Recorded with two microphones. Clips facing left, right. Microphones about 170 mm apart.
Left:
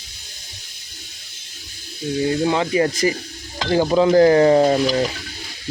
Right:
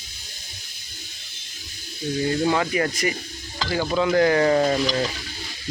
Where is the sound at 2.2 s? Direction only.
20° left (ahead or behind).